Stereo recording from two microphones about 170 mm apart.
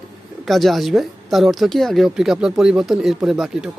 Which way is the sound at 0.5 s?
Centre (ahead or behind).